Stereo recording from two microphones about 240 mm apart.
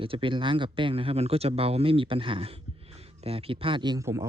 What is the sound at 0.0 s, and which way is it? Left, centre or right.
Speech, right.